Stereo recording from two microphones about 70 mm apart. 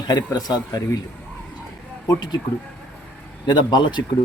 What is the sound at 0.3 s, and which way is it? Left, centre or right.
Speech, left.